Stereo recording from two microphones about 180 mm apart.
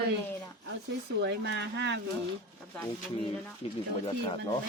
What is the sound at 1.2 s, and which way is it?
Speech, 70° right (ahead or behind).